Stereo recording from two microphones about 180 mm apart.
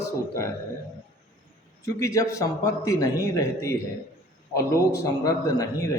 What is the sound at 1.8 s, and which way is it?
A man's voice, 15° left (ahead or behind).